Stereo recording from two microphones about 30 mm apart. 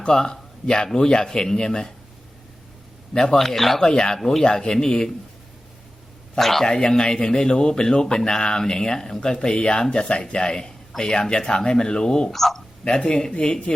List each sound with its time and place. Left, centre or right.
0.1 s speech: left
3.1 s a man's voice: left
3.3 s speech: centre
3.8 s speech: left
4.2 s speech: centre
4.4 s speech: left
6.4 s speech: centre
6.7 s speech: left
12.3 s speech: centre
12.8 s speech: left